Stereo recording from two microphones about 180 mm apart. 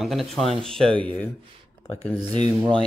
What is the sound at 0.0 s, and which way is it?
Speech, centre (ahead or behind).